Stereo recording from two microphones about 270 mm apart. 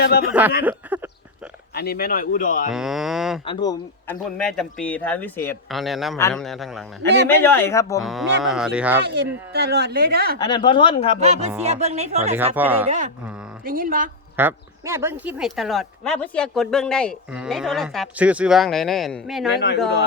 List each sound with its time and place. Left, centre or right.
0.0 s speech: left
0.6 s a sound: centre
1.7 s speech: left
2.7 s speech: centre
3.4 s speech: centre
4.4 s speech: centre
8.0 s speech: centre
9.0 s a woman's voice: right
10.3 s speech: centre
11.6 s speech: right
12.5 s speech: centre
13.7 s a woman's voice: right
14.3 s speech: centre
19.5 s speech: left